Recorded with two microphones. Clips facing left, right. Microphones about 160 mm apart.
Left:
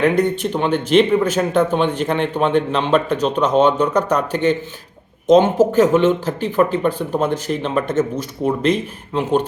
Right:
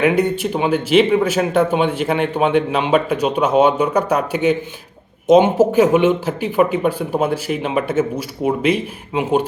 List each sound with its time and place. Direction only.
0.0 s speech: 10° right (ahead or behind)